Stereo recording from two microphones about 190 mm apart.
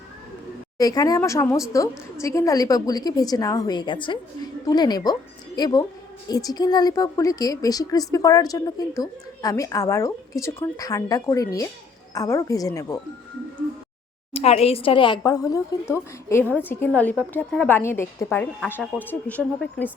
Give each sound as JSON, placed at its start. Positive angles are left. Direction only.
{"t": 0.8, "sound": "a woman's voice", "side_deg": 20}
{"t": 14.3, "sound": "a woman's voice", "side_deg": 30}